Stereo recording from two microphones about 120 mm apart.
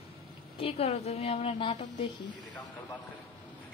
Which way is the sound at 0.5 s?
50° left (ahead or behind).